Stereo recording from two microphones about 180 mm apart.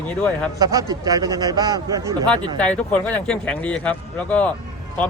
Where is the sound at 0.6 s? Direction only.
20° right (ahead or behind).